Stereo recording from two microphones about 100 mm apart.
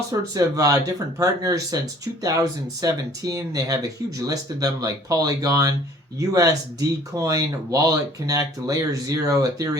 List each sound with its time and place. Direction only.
0.1 s speech: 35° right (ahead or behind)